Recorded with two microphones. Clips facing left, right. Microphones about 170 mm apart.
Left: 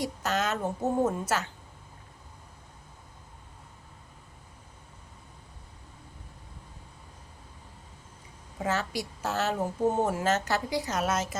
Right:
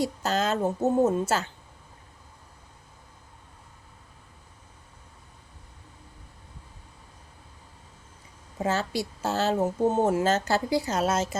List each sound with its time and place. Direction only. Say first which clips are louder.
0.0 s a woman's voice: right 3 dB; 30° right (ahead or behind)
8.5 s a woman's voice: right 3 dB; 30° right (ahead or behind)